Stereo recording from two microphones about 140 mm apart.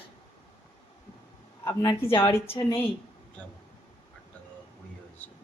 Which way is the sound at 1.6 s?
20° left (ahead or behind).